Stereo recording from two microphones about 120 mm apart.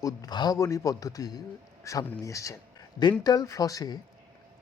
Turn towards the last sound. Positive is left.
turn(degrees=30)  # may be behind; listen again after turning